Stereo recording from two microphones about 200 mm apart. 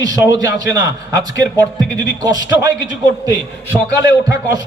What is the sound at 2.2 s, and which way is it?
Speech, 20° right (ahead or behind).